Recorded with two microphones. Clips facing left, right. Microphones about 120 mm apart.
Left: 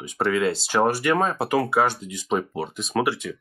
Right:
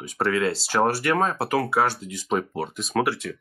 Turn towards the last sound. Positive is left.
turn(degrees=0)  # may be behind; listen again after turning